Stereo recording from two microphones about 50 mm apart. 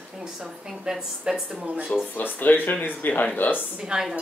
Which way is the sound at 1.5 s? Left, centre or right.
Right.